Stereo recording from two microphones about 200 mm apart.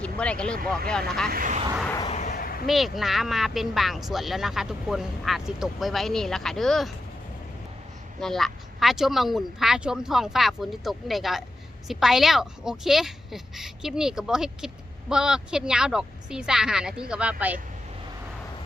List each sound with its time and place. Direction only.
0.0 s speech: 5° left (ahead or behind)
1.3 s speech: 40° right (ahead or behind)
2.0 s a sound: 35° left (ahead or behind)
2.3 s a sound: 50° left (ahead or behind)
2.6 s speech: centre (ahead or behind)
8.2 s speech: centre (ahead or behind)